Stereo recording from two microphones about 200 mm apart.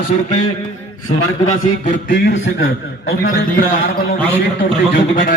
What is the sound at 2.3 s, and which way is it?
Speech, 65° left (ahead or behind).